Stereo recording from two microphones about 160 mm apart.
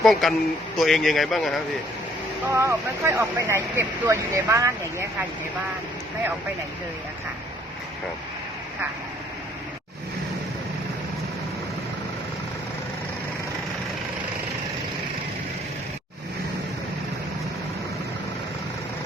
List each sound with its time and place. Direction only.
0.0 s speech: centre (ahead or behind)
2.5 s speech: 15° right (ahead or behind)